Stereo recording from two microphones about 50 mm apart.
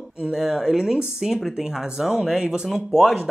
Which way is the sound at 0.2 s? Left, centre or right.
Centre.